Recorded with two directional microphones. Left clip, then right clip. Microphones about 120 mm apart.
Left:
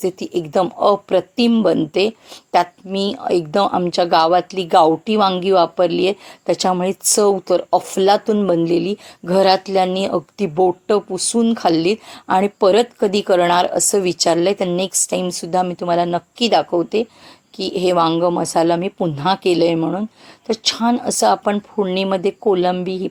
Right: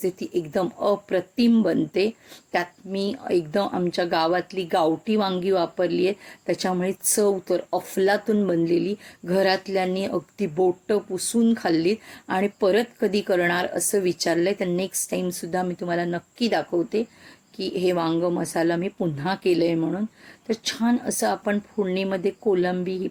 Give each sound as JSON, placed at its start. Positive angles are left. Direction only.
{"t": 0.0, "sound": "a woman's voice", "side_deg": 15}
{"t": 19.8, "sound": "a woman's voice", "side_deg": 5}